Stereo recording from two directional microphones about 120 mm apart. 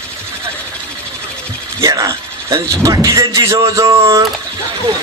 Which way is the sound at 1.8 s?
30° right (ahead or behind).